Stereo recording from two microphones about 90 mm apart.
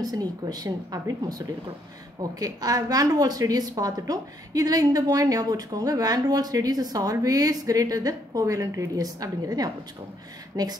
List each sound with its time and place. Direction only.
0.0 s a woman's voice: 45° right (ahead or behind)
2.3 s a woman's voice: 40° right (ahead or behind)